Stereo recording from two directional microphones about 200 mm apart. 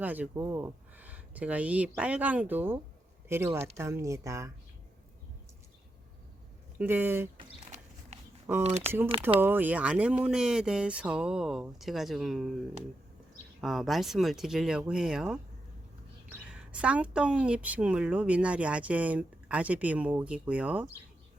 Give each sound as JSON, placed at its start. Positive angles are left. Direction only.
{"t": 0.0, "sound": "a woman's voice", "side_deg": -10}
{"t": 6.7, "sound": "a woman's voice", "side_deg": -10}
{"t": 7.3, "sound": "a sound", "side_deg": -30}
{"t": 8.6, "sound": "speech", "side_deg": -30}
{"t": 9.4, "sound": "speech", "side_deg": -10}
{"t": 13.6, "sound": "speech", "side_deg": 0}
{"t": 16.5, "sound": "a woman's voice", "side_deg": -5}